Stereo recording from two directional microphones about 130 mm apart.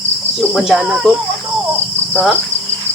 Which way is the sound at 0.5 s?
Centre (ahead or behind).